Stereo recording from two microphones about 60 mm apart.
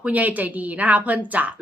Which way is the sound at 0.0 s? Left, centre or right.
Right.